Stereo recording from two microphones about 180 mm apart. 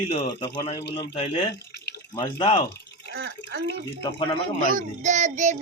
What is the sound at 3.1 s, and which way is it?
Speech, 65° right (ahead or behind).